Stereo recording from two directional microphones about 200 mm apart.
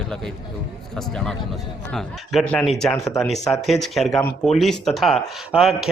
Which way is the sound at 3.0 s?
15° left (ahead or behind).